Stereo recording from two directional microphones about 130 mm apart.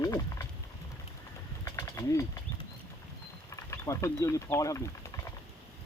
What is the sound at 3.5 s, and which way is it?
Speech, 20° left (ahead or behind).